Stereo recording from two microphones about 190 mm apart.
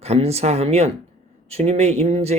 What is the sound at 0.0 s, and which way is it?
Speech, 35° right (ahead or behind).